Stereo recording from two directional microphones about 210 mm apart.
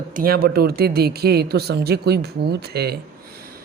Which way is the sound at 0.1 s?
45° right (ahead or behind).